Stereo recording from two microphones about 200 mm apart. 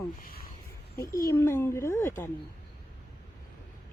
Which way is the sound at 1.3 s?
10° left (ahead or behind).